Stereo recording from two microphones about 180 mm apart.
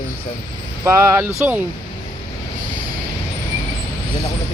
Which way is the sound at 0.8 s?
15° right (ahead or behind).